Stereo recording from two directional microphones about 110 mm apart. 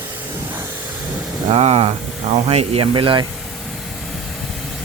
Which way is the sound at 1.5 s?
70° right (ahead or behind).